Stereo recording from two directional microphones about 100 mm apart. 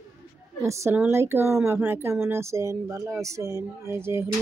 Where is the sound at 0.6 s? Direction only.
30° right (ahead or behind).